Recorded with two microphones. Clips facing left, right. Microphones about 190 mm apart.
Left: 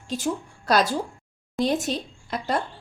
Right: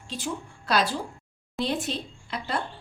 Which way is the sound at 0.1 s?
45° left (ahead or behind).